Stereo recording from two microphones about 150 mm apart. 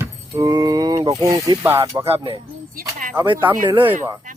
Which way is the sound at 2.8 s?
70° right (ahead or behind).